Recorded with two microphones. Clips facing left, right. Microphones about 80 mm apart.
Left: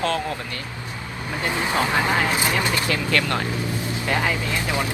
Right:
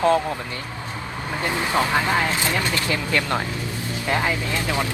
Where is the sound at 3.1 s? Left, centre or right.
Centre.